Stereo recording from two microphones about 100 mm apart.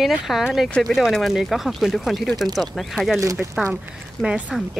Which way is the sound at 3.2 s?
35° right (ahead or behind).